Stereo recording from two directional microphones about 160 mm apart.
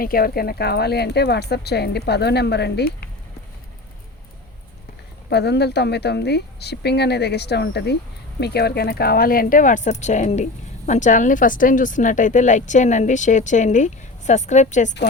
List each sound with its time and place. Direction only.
0.0 s speech: 65° left (ahead or behind); by 3.1 s 80° left
5.3 s speech: 90° left; by 14.9 s 50° left (ahead or behind)